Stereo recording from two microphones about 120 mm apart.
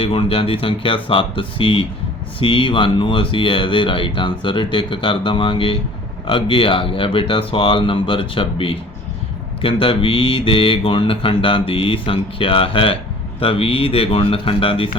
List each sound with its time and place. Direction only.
0.0 s mantra: 50° left (ahead or behind)